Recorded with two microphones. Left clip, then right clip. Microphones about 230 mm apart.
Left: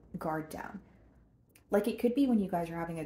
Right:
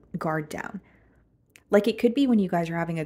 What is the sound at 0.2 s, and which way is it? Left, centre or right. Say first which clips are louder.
Speech: right 7 dB; right.